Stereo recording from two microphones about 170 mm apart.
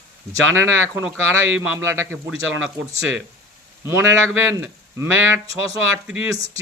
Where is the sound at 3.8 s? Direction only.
15° right (ahead or behind).